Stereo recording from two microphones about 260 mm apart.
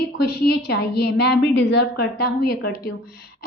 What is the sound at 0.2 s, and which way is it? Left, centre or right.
A woman's voice, left.